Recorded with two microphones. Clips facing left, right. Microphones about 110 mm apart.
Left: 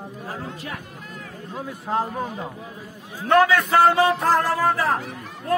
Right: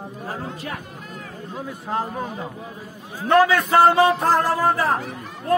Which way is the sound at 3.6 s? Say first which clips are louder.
Right 2 dB; 30° right (ahead or behind).